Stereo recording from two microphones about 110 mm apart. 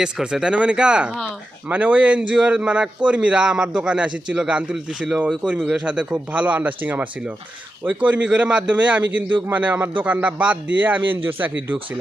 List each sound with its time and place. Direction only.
0.0 s a man's voice: 5° right (ahead or behind)